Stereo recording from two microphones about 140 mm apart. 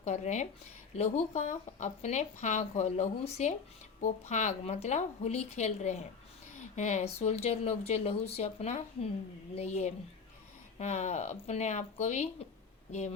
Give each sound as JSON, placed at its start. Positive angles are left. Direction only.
{"t": 0.0, "sound": "speech", "side_deg": 55}